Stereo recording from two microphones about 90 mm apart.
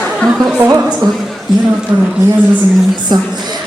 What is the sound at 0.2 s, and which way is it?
Speech, centre (ahead or behind).